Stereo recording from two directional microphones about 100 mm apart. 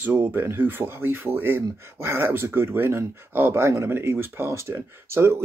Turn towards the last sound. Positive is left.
turn(degrees=-25)  # may be behind; listen again after turning